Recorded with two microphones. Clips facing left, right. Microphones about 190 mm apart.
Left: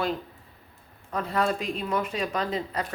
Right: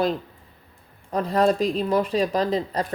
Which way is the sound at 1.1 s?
35° right (ahead or behind).